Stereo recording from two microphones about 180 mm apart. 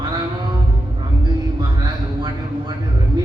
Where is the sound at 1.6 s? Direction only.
25° right (ahead or behind).